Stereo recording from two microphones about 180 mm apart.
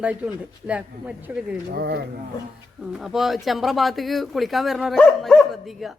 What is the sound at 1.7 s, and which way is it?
Speech, 60° right (ahead or behind).